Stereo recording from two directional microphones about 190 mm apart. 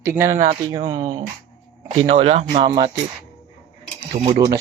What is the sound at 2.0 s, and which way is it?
Speech, 30° right (ahead or behind).